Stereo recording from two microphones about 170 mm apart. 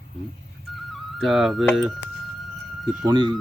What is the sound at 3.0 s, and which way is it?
Speech, 25° right (ahead or behind).